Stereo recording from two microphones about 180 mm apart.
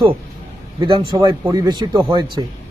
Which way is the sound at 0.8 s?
25° right (ahead or behind).